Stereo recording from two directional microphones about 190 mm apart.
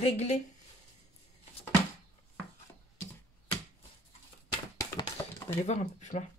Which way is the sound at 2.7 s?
15° left (ahead or behind).